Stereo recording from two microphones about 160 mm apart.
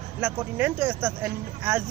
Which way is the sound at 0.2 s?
10° right (ahead or behind).